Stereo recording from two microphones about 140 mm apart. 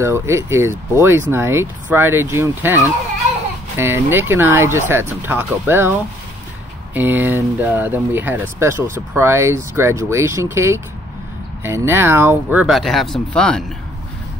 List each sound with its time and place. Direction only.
0.0 s speech: 20° right (ahead or behind)
12.6 s speech: centre (ahead or behind)